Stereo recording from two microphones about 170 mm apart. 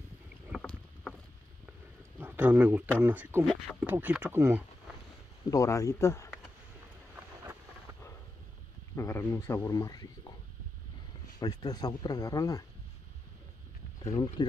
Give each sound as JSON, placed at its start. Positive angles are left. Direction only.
{"t": 0.5, "sound": "rowboat", "side_deg": 0}
{"t": 2.1, "sound": "speech", "side_deg": -10}
{"t": 5.5, "sound": "a man's voice", "side_deg": 20}
{"t": 8.9, "sound": "a man's voice", "side_deg": 15}
{"t": 11.3, "sound": "speech", "side_deg": 20}